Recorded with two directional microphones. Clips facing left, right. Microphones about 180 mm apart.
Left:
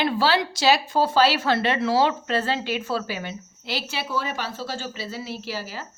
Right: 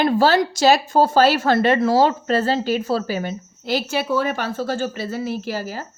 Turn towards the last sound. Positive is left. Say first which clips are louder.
# right 6 dB
turn(degrees=-45)  # may be behind; listen again after turning